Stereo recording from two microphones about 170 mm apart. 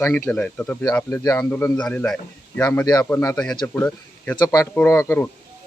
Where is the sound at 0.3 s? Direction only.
10° left (ahead or behind).